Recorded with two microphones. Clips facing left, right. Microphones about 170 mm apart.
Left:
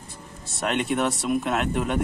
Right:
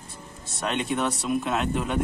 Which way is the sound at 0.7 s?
55° left (ahead or behind).